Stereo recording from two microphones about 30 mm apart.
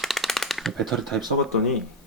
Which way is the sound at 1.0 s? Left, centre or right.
Centre.